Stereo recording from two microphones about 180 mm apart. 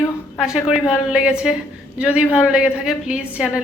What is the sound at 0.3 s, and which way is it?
A woman's voice, 5° right (ahead or behind).